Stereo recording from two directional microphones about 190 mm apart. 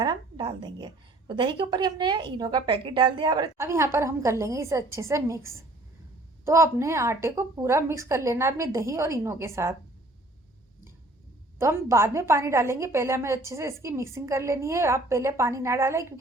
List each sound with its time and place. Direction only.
0.0 s a woman's voice: 25° right (ahead or behind)
11.6 s a woman's voice: 15° right (ahead or behind)